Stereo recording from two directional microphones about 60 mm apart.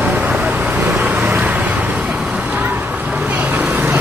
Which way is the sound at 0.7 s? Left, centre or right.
Right.